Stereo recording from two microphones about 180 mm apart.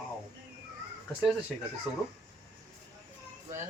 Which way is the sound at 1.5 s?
Centre (ahead or behind).